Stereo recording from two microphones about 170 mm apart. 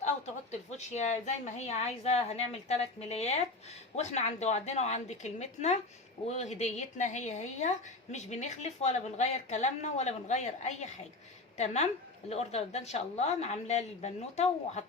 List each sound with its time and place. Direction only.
0.8 s a woman's voice: 40° left (ahead or behind)